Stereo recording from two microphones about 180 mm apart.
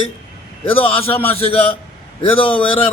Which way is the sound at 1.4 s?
30° left (ahead or behind).